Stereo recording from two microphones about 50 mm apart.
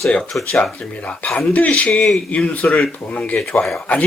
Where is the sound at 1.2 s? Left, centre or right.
Left.